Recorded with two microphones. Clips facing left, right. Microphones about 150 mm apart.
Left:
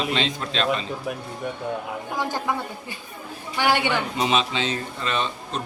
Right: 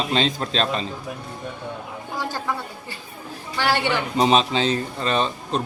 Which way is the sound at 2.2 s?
20° left (ahead or behind).